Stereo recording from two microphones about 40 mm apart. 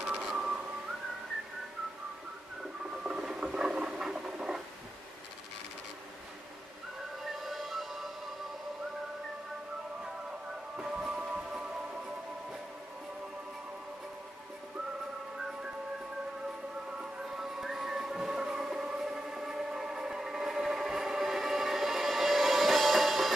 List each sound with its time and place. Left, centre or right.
0.1 s whistling: centre
3.0 s rodents: right
3.3 s patter: centre
7.2 s music: centre
10.8 s music: centre
17.0 s music: centre
18.6 s a sound: centre